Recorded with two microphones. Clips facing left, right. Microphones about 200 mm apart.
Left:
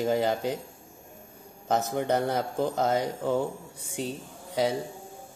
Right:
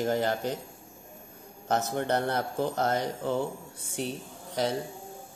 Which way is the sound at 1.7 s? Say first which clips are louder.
Left 2 dB; 15° left (ahead or behind).